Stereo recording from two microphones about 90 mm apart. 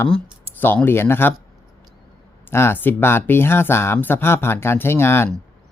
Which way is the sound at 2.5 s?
25° left (ahead or behind).